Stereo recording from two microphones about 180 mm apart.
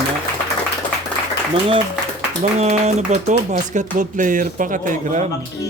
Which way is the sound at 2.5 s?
35° right (ahead or behind).